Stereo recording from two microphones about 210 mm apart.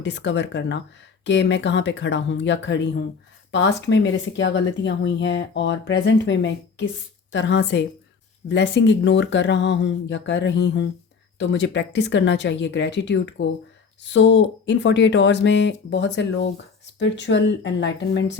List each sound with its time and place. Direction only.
0.0 s speech: 60° left (ahead or behind)